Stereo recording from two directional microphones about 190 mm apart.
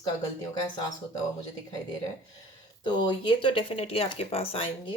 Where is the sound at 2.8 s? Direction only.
25° left (ahead or behind).